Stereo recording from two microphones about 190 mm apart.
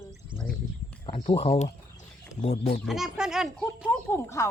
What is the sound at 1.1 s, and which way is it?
Speech, 30° left (ahead or behind).